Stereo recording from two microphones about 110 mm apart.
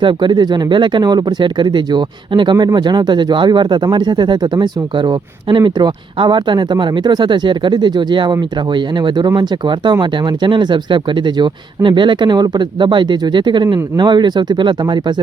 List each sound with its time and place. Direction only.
0.0 s speech: 45° right (ahead or behind)